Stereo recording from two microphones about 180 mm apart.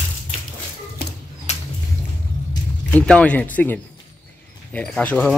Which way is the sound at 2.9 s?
5° left (ahead or behind).